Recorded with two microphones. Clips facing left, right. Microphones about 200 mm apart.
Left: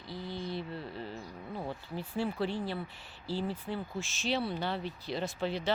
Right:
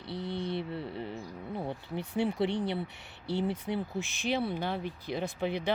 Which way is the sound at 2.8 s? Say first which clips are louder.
Right 3 dB; 70° right (ahead or behind).